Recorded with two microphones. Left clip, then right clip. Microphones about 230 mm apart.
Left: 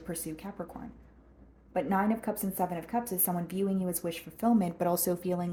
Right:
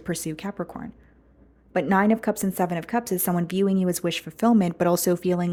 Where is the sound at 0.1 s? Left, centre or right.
Right.